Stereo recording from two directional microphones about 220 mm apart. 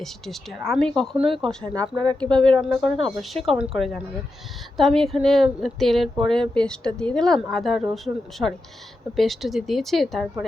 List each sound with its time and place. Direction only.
0.0 s a woman's voice: centre (ahead or behind)
1.8 s speech: 20° right (ahead or behind)
2.4 s a woman's voice: centre (ahead or behind)